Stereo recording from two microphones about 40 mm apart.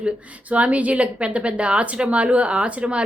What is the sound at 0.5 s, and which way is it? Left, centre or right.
Speech, right.